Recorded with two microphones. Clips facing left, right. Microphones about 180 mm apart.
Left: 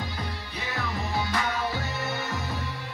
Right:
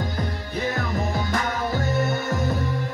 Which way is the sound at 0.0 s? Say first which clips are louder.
Right 6 dB; 45° right (ahead or behind).